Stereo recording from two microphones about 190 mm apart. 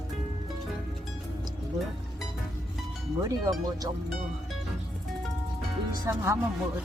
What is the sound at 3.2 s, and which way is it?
Speech, 20° right (ahead or behind).